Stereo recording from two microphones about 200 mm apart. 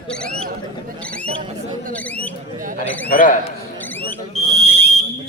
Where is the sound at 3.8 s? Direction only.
10° left (ahead or behind).